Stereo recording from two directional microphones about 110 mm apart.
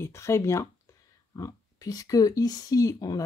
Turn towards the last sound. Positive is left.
turn(degrees=35)  # may be behind; listen again after turning